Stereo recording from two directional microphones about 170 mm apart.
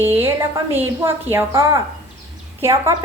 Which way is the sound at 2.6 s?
15° right (ahead or behind).